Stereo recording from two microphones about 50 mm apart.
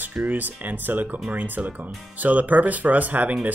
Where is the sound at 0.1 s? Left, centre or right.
Right.